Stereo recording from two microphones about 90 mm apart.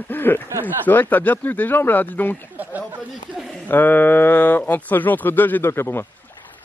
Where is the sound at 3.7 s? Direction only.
20° left (ahead or behind).